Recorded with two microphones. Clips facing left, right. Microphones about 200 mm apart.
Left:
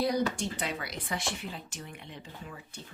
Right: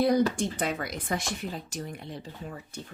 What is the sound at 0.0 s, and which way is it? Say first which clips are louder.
Speech: right 5 dB; 50° right (ahead or behind).